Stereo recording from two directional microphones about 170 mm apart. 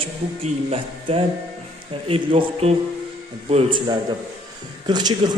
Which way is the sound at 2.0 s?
35° right (ahead or behind).